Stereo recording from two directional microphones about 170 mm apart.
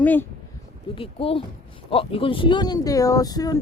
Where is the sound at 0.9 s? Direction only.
35° left (ahead or behind).